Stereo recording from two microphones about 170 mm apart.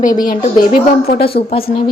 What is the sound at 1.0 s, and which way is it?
Speech, 65° left (ahead or behind).